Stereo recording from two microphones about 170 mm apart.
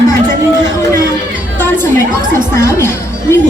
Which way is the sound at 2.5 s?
15° left (ahead or behind).